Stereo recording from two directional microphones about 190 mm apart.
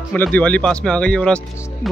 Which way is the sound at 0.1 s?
5° left (ahead or behind).